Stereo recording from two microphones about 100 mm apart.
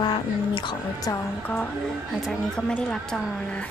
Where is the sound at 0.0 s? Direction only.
50° left (ahead or behind).